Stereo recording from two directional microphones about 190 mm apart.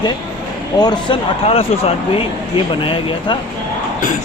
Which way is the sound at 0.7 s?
20° left (ahead or behind).